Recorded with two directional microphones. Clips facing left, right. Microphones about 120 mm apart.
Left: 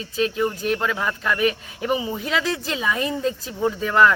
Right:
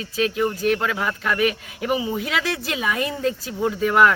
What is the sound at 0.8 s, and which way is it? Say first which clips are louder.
Speech: even; 5° right (ahead or behind).